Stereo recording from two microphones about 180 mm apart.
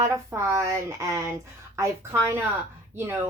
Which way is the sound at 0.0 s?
15° right (ahead or behind).